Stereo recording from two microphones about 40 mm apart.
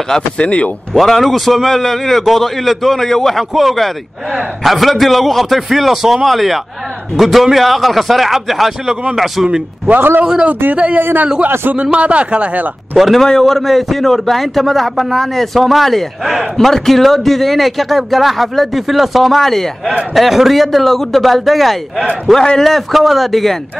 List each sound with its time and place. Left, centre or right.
0.4 s speech: left
0.9 s a man's voice: centre
9.9 s a man's voice: right
10.7 s a man's voice: right
11.0 s a man's voice: right
11.7 s a man's voice: right
12.9 s a man's voice: centre
13.2 s a man's voice: centre